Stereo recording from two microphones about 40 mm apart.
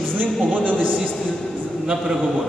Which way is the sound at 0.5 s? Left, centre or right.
Right.